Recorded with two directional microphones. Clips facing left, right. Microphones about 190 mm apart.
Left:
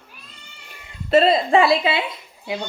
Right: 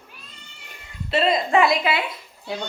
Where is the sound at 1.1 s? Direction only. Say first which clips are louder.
Left 5 dB; 40° left (ahead or behind).